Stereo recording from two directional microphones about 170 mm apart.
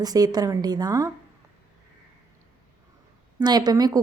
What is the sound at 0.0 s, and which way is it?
A woman's voice, 20° right (ahead or behind).